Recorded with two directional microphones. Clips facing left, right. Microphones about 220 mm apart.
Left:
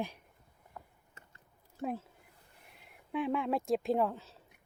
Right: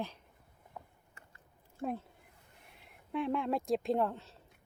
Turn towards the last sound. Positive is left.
turn(degrees=0)  # may be behind; listen again after turning